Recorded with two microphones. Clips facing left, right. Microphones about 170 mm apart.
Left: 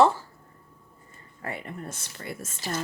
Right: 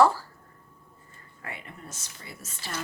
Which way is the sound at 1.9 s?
60° left (ahead or behind).